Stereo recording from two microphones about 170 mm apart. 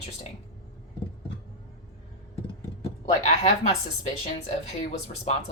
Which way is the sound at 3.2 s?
40° left (ahead or behind).